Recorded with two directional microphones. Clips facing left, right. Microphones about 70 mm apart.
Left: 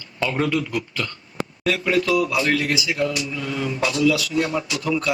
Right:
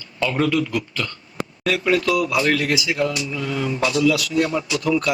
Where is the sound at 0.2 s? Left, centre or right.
Left.